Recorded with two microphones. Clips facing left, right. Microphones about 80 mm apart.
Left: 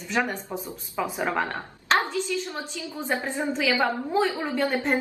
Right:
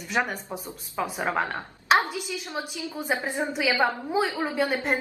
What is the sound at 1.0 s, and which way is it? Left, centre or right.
A woman's voice, centre.